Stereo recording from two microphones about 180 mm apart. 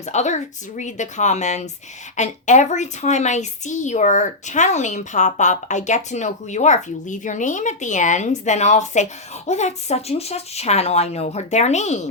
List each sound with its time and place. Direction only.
0.0 s a woman's voice: 40° left (ahead or behind)